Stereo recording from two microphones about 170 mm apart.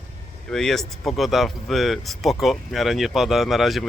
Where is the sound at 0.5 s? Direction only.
Centre (ahead or behind).